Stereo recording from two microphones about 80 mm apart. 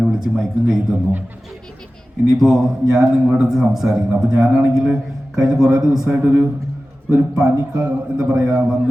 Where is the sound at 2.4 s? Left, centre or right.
Centre.